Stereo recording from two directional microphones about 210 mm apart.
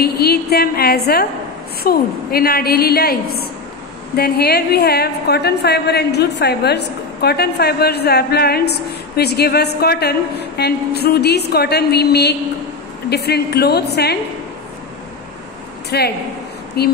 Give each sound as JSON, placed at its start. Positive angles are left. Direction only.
{"t": 0.0, "sound": "a woman's voice", "side_deg": 50}
{"t": 4.2, "sound": "a woman's voice", "side_deg": 50}
{"t": 15.9, "sound": "a woman's voice", "side_deg": 50}